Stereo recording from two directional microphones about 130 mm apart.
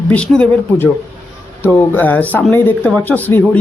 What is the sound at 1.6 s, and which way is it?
Speech, 15° left (ahead or behind).